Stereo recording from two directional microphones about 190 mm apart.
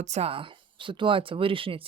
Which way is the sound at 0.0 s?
35° right (ahead or behind).